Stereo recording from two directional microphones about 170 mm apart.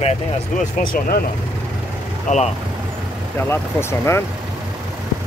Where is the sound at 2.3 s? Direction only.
45° left (ahead or behind).